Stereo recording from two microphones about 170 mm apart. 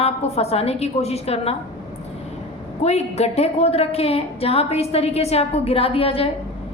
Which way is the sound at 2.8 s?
40° left (ahead or behind).